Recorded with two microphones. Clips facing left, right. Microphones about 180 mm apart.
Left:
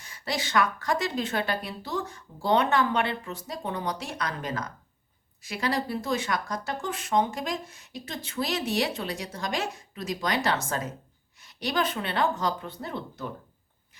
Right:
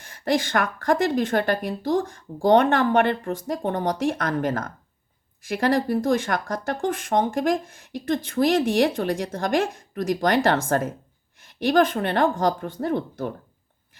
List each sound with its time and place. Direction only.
0.1 s speech: 50° right (ahead or behind)